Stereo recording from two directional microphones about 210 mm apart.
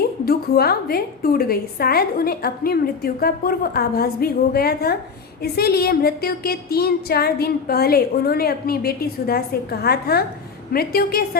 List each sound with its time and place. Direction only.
0.3 s a woman's voice: 45° left (ahead or behind)